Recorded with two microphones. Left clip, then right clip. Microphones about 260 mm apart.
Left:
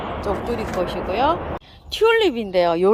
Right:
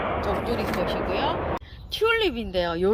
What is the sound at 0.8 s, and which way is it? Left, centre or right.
Speech, centre.